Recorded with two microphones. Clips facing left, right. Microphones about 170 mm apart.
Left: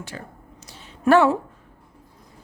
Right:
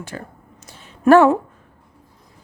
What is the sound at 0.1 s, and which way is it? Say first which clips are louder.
Speech: right 5 dB; 50° right (ahead or behind).